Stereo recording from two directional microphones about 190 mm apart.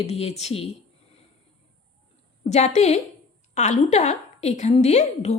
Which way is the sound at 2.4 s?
35° left (ahead or behind).